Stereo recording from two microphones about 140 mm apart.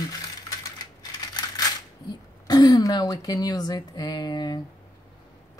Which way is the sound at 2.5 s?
30° left (ahead or behind).